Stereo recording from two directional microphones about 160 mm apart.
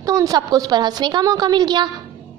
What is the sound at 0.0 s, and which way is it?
A woman's voice, 20° right (ahead or behind).